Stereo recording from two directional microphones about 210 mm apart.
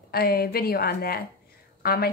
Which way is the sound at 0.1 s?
45° left (ahead or behind).